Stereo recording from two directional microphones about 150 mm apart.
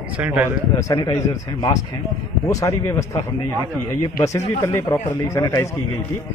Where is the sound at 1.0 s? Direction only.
30° left (ahead or behind).